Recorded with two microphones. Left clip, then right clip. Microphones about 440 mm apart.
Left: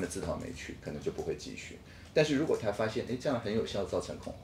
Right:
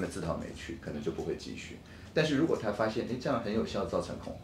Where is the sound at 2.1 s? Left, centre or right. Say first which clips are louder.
Left 2 dB; left.